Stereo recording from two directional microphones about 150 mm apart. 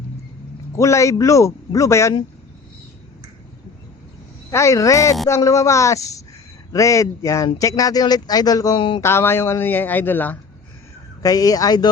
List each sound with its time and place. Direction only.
0.8 s speech: 20° left (ahead or behind)
4.5 s speech: 20° left (ahead or behind)
11.2 s speech: 25° left (ahead or behind)